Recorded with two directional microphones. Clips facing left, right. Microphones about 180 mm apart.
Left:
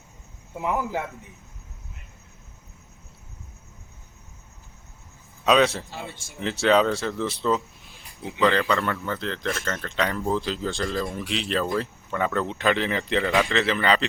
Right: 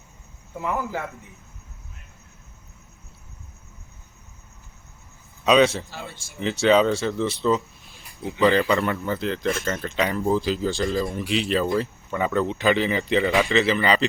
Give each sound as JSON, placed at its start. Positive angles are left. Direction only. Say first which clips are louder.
{"t": 0.6, "sound": "a man's voice", "louder": "left 1 dB", "side_deg": 15}
{"t": 5.5, "sound": "speech", "louder": "right 2 dB", "side_deg": 0}